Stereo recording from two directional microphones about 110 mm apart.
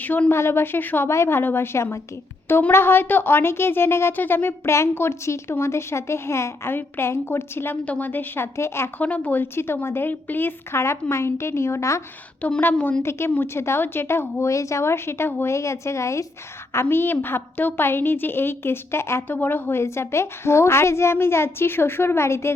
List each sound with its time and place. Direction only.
0.0 s speech: 15° left (ahead or behind)
12.4 s a woman's voice: 15° left (ahead or behind)
13.0 s speech: 25° left (ahead or behind)